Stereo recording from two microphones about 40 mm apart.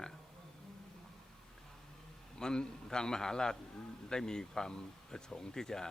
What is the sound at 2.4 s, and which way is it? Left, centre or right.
A man's voice, centre.